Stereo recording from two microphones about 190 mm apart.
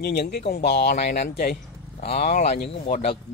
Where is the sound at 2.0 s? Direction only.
35° left (ahead or behind).